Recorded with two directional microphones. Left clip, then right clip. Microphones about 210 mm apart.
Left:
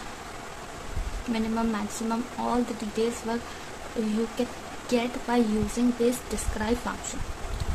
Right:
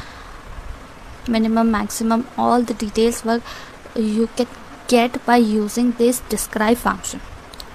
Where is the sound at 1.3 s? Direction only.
35° right (ahead or behind).